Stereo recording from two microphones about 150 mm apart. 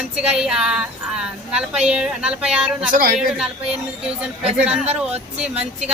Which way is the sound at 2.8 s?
65° right (ahead or behind).